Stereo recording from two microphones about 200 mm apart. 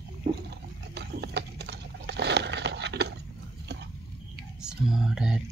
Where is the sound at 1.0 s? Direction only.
55° right (ahead or behind).